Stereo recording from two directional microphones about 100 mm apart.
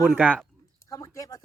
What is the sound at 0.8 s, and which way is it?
Speech, 45° left (ahead or behind).